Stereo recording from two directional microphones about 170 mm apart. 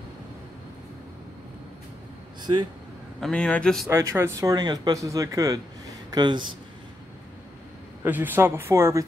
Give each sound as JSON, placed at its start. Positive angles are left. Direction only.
{"t": 3.2, "sound": "a man's voice", "side_deg": 5}
{"t": 3.9, "sound": "speech", "side_deg": -15}
{"t": 8.0, "sound": "speech", "side_deg": -10}